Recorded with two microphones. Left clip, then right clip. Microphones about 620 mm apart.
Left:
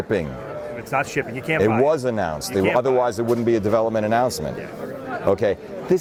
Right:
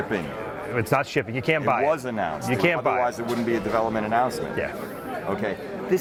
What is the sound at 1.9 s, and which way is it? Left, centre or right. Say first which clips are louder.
Speech: left 4 dB; left.